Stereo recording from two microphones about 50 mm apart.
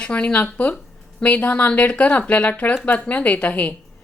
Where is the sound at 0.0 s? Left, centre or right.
Left.